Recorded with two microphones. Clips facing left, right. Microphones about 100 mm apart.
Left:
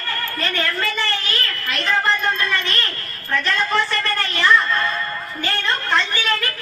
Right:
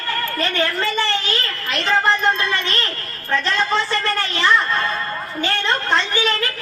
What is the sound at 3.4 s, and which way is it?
Speech, 20° right (ahead or behind).